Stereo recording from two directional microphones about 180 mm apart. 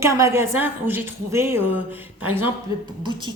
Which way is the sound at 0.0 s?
15° right (ahead or behind).